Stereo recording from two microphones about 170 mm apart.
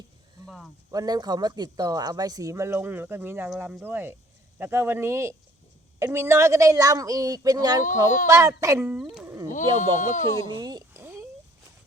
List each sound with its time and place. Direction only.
0.4 s speech: centre (ahead or behind)
0.9 s speech: 20° right (ahead or behind)
7.8 s speech: 50° left (ahead or behind)
8.3 s speech: 20° right (ahead or behind)
9.0 s speech: 5° right (ahead or behind)
9.2 s sheep: 15° right (ahead or behind)
9.5 s speech: 50° left (ahead or behind)
10.5 s a sound: 25° right (ahead or behind)
11.0 s a sound: 15° right (ahead or behind)